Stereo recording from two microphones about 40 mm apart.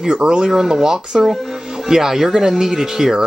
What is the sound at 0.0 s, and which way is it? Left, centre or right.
Speech, right.